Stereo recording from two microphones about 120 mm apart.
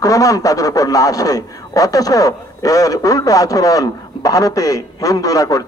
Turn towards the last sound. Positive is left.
turn(degrees=30)  # may be behind; listen again after turning